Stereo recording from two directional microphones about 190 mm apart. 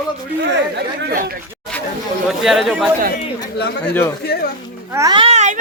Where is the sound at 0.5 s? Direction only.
65° right (ahead or behind).